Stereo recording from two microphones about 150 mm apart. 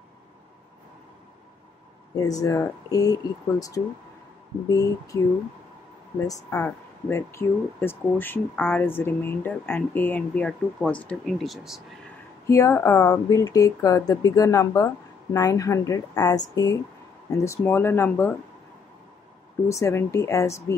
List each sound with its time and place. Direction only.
2.1 s speech: 25° left (ahead or behind)
6.5 s speech: 20° left (ahead or behind); by 11.8 s centre (ahead or behind)
12.4 s speech: 20° left (ahead or behind)
19.7 s speech: 20° left (ahead or behind)